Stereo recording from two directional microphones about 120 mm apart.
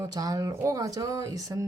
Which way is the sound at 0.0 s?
30° right (ahead or behind).